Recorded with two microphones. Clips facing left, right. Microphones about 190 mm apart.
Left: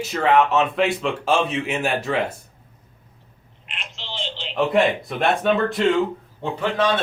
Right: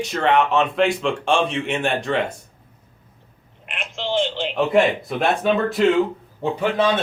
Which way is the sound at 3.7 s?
50° right (ahead or behind).